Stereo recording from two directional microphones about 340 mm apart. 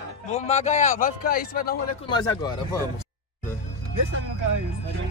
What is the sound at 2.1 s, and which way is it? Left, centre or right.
Speech, centre.